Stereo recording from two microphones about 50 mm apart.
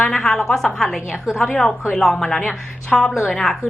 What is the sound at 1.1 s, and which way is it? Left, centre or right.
Speech, centre.